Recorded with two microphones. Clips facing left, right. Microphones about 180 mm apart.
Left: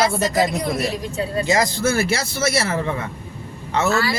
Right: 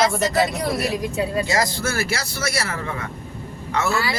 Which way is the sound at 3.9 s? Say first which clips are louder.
Left 4 dB; 15° right (ahead or behind).